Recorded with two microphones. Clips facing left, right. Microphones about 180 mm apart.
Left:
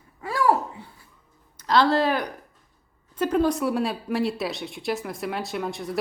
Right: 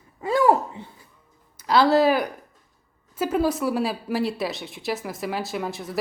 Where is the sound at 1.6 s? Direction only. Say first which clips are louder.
Right 3 dB; 5° right (ahead or behind).